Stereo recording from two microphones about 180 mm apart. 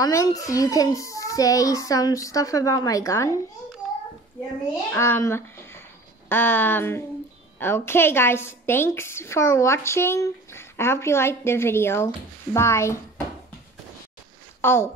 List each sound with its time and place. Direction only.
0.0 s a child's voice: 20° left (ahead or behind)
4.9 s a woman's voice: 15° left (ahead or behind)
14.6 s speech: 15° left (ahead or behind)